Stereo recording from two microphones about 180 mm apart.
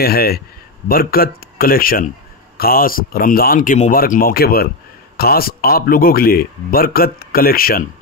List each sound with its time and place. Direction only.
0.0 s speech: 60° left (ahead or behind)